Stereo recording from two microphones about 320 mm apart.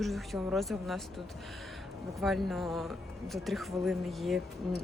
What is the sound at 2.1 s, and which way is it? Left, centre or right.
Speech, centre.